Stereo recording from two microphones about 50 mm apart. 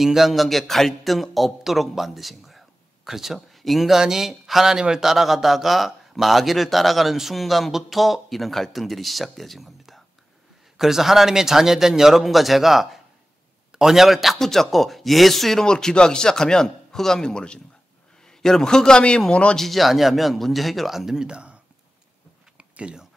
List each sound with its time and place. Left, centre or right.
0.0 s a man's voice: centre
15.6 s speech: centre
19.5 s speech: centre
22.6 s biting: right